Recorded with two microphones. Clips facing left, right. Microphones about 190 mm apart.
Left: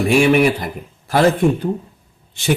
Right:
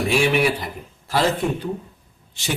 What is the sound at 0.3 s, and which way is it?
Speech, 55° left (ahead or behind).